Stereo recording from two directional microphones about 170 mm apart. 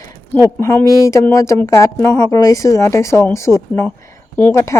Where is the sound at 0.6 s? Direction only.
15° left (ahead or behind).